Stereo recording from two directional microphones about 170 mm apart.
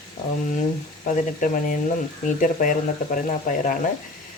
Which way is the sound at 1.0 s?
50° left (ahead or behind).